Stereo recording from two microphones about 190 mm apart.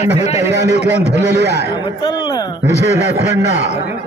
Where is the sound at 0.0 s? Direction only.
35° left (ahead or behind).